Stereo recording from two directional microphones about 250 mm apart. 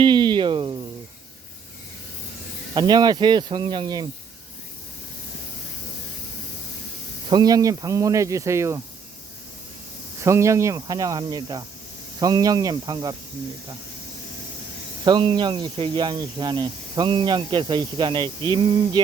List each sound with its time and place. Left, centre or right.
0.0 s a sound: centre
2.7 s speech: centre
7.3 s speech: centre
10.2 s speech: centre
15.0 s speech: centre